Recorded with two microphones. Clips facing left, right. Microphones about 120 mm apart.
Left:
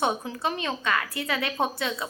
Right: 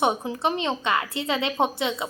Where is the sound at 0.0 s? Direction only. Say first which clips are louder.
Right 3 dB; 20° right (ahead or behind).